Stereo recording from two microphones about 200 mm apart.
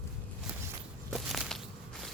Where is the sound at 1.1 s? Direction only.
Centre (ahead or behind).